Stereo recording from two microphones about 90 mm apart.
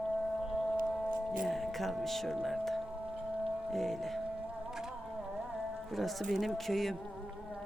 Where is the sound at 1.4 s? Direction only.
Centre (ahead or behind).